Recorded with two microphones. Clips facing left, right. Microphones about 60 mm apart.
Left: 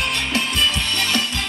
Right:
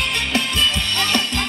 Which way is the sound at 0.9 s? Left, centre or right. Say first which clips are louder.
Right 1 dB; right.